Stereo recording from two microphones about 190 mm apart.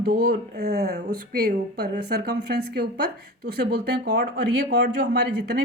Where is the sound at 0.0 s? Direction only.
55° right (ahead or behind).